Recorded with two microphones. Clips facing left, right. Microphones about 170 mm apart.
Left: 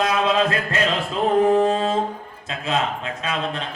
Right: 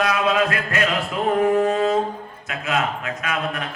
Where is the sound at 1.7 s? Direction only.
30° left (ahead or behind).